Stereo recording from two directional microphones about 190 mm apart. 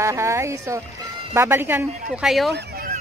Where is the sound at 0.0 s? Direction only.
15° right (ahead or behind).